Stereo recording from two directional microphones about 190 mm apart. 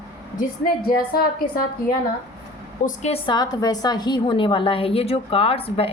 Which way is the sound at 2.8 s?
35° left (ahead or behind).